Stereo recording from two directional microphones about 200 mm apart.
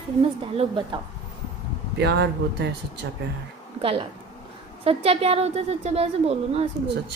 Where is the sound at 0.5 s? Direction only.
25° right (ahead or behind).